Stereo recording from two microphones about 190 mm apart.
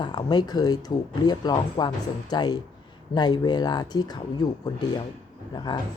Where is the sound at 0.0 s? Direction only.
25° left (ahead or behind).